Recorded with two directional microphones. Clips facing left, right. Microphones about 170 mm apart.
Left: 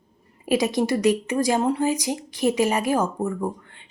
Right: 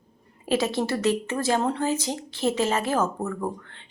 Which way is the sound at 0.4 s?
15° left (ahead or behind).